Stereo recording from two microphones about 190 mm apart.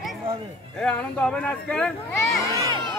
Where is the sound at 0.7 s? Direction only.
5° left (ahead or behind).